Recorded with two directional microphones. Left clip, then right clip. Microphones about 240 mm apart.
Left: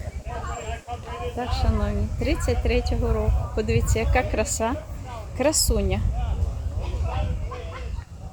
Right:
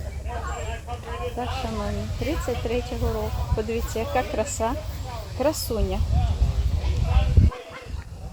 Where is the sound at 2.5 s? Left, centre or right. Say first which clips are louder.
Left 2 dB; centre.